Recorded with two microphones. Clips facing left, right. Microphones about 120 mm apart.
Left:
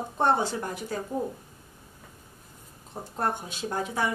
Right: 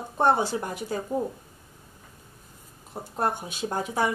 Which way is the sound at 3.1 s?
15° right (ahead or behind).